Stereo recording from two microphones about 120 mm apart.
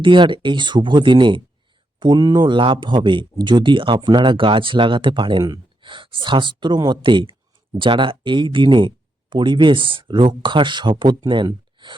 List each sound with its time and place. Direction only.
0.0 s speech: 40° right (ahead or behind)